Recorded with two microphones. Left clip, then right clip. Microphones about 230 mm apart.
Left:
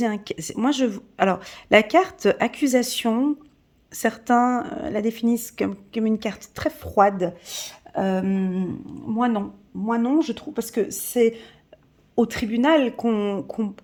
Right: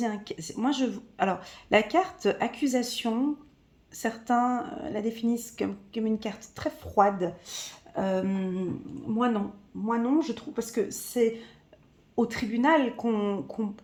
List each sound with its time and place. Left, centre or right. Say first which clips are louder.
0.0 s speech: left 6 dB; left